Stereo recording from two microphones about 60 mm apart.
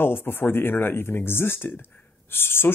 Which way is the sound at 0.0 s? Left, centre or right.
Left.